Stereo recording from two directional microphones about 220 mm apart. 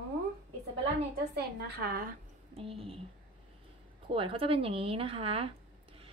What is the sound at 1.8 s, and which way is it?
Speech, 40° right (ahead or behind).